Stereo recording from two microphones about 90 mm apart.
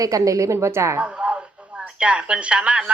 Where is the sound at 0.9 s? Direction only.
15° right (ahead or behind).